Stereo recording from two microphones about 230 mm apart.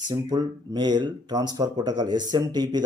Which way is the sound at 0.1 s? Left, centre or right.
Centre.